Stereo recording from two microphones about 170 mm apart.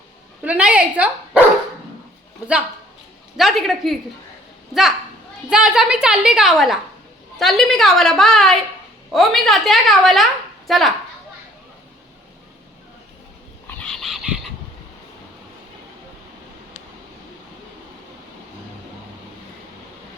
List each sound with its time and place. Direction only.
0.4 s speech: 10° right (ahead or behind)
3.3 s a woman's voice: centre (ahead or behind)
13.8 s frog: centre (ahead or behind)